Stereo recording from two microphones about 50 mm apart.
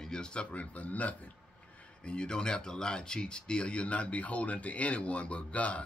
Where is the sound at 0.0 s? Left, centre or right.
Centre.